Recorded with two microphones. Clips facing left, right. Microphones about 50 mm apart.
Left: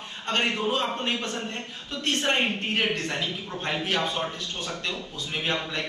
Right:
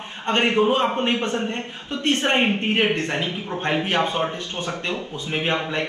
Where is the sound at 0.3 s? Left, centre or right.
Right.